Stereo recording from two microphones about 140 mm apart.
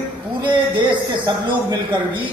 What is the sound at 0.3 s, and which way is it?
A man's voice, 35° right (ahead or behind).